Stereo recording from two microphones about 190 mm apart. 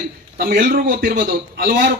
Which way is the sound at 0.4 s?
45° right (ahead or behind).